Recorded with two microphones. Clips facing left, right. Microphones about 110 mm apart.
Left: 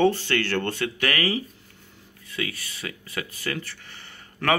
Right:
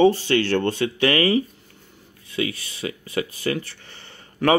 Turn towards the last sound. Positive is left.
turn(degrees=-25)  # may be behind; listen again after turning